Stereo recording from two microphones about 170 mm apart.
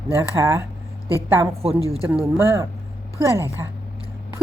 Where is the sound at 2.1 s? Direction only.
10° right (ahead or behind).